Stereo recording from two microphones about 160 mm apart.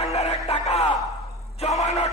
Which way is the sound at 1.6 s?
40° left (ahead or behind).